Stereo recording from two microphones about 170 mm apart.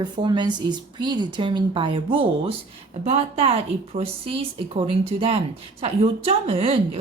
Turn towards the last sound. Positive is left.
turn(degrees=-35)  # may be behind; listen again after turning